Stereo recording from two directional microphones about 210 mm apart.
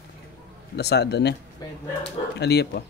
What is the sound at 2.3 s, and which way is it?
Speech, 55° left (ahead or behind).